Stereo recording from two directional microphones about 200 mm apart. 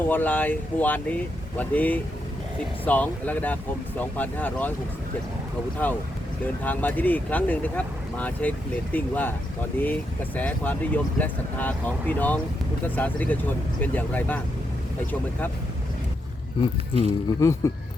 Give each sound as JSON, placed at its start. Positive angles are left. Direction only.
{"t": 0.0, "sound": "speech", "side_deg": 10}
{"t": 6.4, "sound": "speech", "side_deg": 10}
{"t": 17.0, "sound": "speech", "side_deg": 15}